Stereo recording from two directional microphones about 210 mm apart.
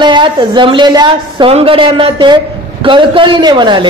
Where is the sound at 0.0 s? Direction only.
20° right (ahead or behind).